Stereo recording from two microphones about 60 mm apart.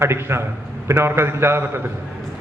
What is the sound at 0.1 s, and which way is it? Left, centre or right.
A man's voice, right.